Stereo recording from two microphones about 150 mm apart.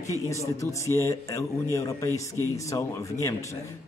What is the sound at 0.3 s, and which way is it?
Speech, 20° left (ahead or behind).